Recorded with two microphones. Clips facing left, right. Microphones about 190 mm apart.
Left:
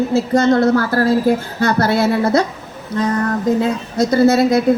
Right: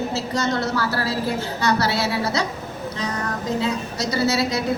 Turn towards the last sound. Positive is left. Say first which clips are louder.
# left 9 dB
turn(degrees=50)  # may be behind; listen again after turning